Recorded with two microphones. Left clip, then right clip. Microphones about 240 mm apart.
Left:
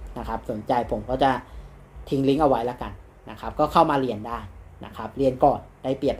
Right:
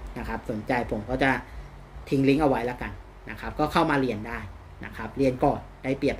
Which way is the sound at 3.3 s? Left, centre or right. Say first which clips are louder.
Left 5 dB; centre.